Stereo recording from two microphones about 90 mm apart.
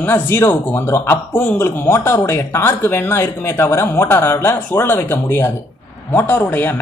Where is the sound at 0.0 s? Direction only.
25° left (ahead or behind).